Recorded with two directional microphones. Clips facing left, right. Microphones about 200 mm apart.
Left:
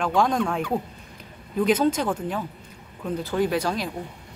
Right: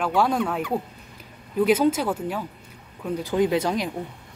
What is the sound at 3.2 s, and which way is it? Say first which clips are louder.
Speech: right 2 dB; 15° right (ahead or behind).